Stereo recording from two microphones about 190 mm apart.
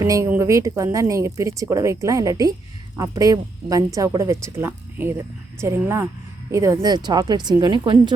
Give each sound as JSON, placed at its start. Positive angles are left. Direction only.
{"t": 0.0, "sound": "a woman's voice", "side_deg": -15}